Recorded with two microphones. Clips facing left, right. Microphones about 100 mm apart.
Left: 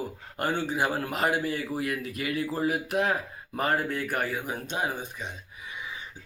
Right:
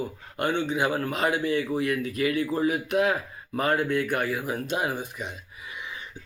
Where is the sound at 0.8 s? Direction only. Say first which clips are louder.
Even; 5° left (ahead or behind).